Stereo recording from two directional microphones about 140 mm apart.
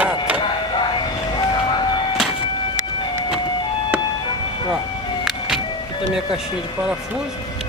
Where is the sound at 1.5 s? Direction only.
35° left (ahead or behind).